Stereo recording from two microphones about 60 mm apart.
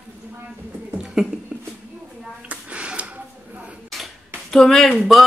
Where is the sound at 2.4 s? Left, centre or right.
Centre.